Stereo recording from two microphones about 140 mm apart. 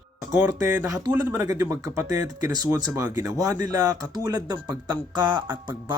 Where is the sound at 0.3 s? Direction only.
20° right (ahead or behind).